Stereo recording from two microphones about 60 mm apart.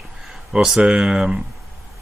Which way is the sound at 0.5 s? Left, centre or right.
Centre.